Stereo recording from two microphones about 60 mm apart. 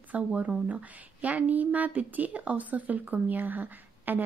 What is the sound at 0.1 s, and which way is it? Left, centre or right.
Speech, right.